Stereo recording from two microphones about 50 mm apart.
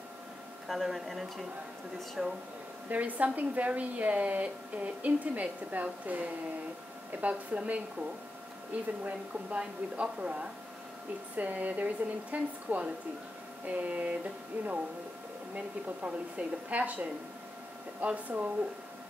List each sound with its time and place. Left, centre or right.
0.7 s speech: centre
2.2 s speech: centre
2.9 s a woman's voice: right
9.0 s a woman's voice: right
15.5 s a woman's voice: right
18.0 s a woman's voice: right